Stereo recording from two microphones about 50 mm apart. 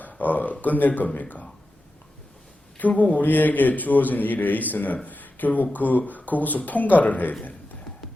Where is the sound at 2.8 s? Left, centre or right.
Left.